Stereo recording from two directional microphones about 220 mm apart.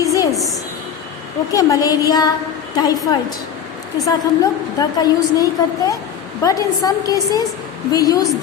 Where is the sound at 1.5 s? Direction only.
15° left (ahead or behind).